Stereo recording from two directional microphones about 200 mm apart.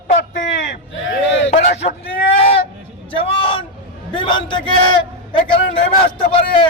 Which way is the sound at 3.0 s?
25° left (ahead or behind).